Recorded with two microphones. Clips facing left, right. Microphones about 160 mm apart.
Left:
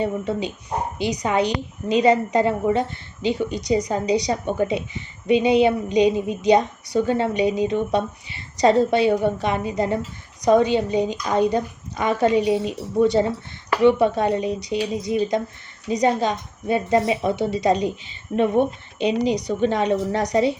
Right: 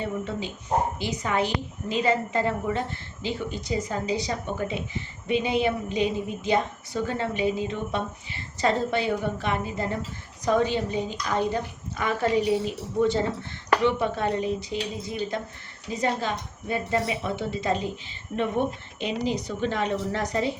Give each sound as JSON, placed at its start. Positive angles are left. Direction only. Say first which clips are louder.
{"t": 0.0, "sound": "a woman's voice", "louder": "left 6 dB", "side_deg": 15}